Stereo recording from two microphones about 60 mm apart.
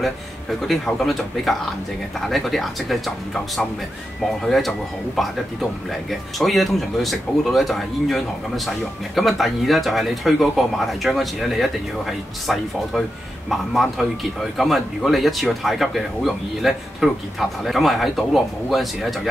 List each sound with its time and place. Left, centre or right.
0.6 s speech: centre
4.5 s speech: centre